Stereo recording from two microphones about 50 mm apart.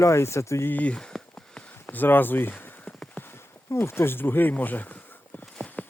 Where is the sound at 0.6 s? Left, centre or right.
Left.